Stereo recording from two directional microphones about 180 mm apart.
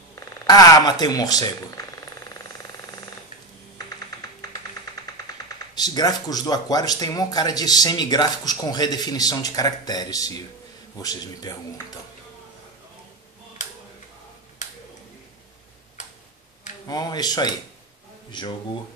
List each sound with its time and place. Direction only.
0.1 s speech: 20° left (ahead or behind)
5.8 s speech: 20° left (ahead or behind)
16.8 s speech: 20° left (ahead or behind)